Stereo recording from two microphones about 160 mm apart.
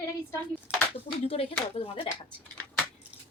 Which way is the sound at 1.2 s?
35° left (ahead or behind).